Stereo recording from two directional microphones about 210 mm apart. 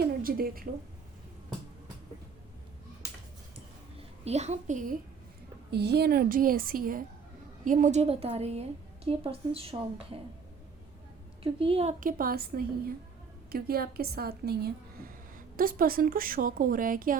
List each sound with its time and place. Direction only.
0.0 s a woman's voice: 45° right (ahead or behind)
3.9 s a child's voice: 30° right (ahead or behind)
5.7 s a woman's voice: 50° right (ahead or behind); by 10.2 s 25° right (ahead or behind)
11.6 s a woman's voice: 30° right (ahead or behind)